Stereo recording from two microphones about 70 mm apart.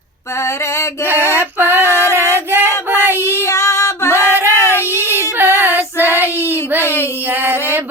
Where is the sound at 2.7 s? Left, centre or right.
Left.